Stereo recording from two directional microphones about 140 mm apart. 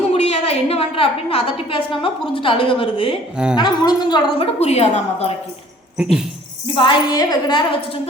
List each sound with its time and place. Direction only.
0.1 s a woman's voice: 50° left (ahead or behind); by 4.4 s 30° left (ahead or behind)
4.6 s a woman's voice: 50° left (ahead or behind)
6.0 s speech: 5° right (ahead or behind)
6.7 s a woman's voice: 35° left (ahead or behind)